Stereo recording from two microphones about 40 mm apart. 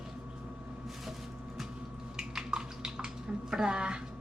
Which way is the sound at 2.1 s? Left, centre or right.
Centre.